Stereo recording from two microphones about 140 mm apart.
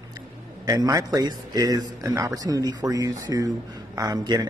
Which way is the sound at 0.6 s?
25° right (ahead or behind).